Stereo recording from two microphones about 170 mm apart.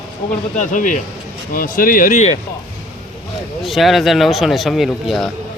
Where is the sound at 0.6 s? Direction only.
50° left (ahead or behind).